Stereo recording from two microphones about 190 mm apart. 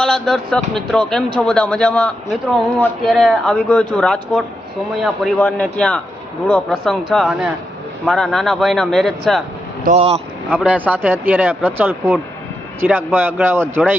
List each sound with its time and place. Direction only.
0.0 s speech: centre (ahead or behind)
5.5 s speech: 5° left (ahead or behind)
9.8 s speech: 35° right (ahead or behind)
10.5 s speech: 10° right (ahead or behind)